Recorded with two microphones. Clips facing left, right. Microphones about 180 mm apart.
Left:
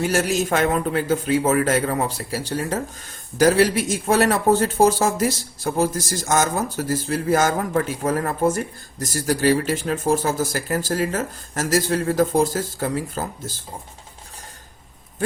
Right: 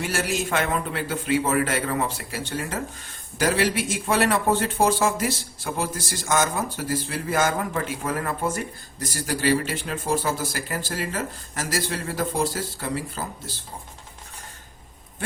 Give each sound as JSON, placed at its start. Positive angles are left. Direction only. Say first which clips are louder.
{"t": 0.0, "sound": "a man's voice", "louder": "left 6 dB", "side_deg": 40}